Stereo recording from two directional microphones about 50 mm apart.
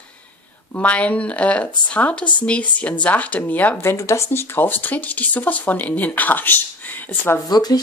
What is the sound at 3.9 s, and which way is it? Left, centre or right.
Speech, left.